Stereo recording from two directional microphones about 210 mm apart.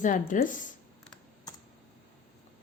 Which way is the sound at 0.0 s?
40° left (ahead or behind).